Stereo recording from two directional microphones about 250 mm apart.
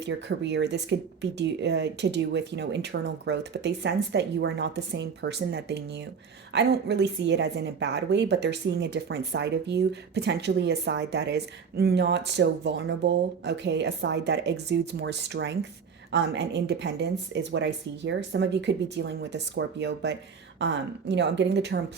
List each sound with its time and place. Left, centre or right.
0.0 s a woman's voice: right